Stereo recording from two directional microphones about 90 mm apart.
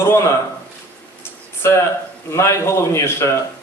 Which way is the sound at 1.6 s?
30° left (ahead or behind).